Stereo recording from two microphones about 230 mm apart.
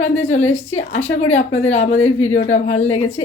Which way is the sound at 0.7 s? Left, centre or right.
Left.